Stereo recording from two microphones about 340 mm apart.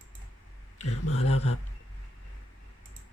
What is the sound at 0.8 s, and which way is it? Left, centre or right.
Speech, left.